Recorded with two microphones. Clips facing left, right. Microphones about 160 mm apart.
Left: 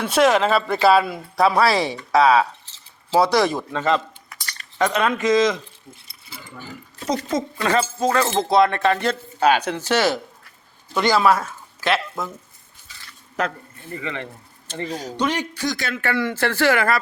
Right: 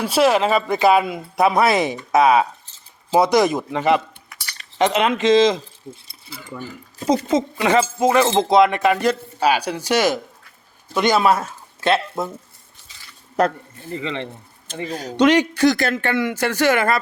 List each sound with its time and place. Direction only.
0.0 s speech: 5° right (ahead or behind); by 5.6 s 25° right (ahead or behind)
7.3 s speech: 20° right (ahead or behind)
13.9 s speech: 20° right (ahead or behind)
14.8 s speech: 60° right (ahead or behind)
15.2 s a man's voice: 75° right (ahead or behind)
16.0 s speech: 20° right (ahead or behind)